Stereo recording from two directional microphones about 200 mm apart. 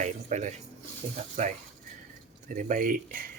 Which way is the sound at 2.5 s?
40° right (ahead or behind).